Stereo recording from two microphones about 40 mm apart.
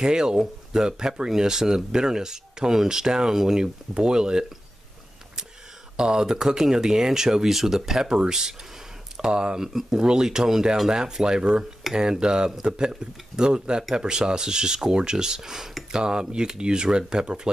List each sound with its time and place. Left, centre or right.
0.0 s speech: centre
5.9 s speech: centre
9.6 s speech: centre